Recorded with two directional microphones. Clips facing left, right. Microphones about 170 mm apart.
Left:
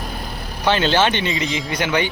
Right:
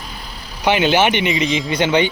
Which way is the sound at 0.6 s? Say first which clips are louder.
Right 2 dB; 15° right (ahead or behind).